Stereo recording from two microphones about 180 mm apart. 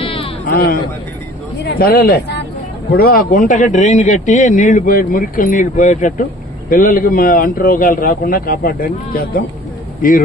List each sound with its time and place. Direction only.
0.5 s a man's voice: 55° left (ahead or behind)
2.9 s a man's voice: 55° left (ahead or behind)